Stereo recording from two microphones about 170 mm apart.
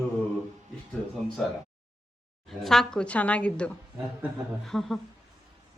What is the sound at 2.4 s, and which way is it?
A woman's voice, centre (ahead or behind).